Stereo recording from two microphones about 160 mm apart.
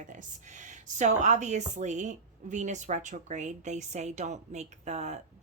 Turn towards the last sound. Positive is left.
turn(degrees=-45)  # may be behind; listen again after turning